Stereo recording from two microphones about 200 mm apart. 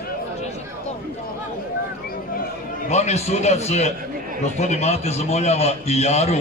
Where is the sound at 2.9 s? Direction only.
35° left (ahead or behind).